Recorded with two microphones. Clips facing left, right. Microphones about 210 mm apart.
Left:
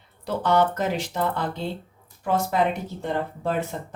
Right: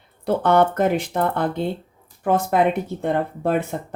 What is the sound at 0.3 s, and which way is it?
Speech, 55° right (ahead or behind).